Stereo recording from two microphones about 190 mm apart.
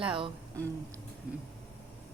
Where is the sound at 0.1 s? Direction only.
25° right (ahead or behind).